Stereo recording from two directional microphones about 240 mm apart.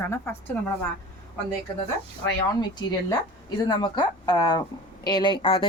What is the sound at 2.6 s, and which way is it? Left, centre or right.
Speech, centre.